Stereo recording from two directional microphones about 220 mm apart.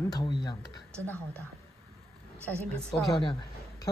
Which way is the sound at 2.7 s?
Centre (ahead or behind).